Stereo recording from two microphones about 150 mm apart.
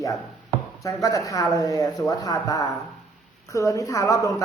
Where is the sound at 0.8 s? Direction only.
20° left (ahead or behind).